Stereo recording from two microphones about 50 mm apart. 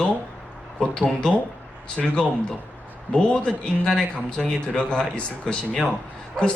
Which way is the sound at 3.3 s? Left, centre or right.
Centre.